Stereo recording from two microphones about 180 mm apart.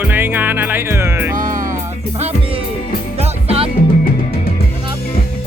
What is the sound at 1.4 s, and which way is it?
Music, 45° right (ahead or behind).